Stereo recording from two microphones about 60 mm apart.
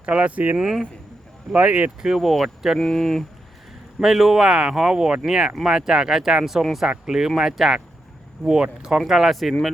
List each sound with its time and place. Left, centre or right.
0.0 s speech: right
0.5 s speech: centre
1.5 s speech: right
2.0 s speech: centre
4.0 s speech: centre